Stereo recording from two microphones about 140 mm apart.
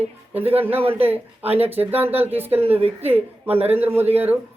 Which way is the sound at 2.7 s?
45° right (ahead or behind).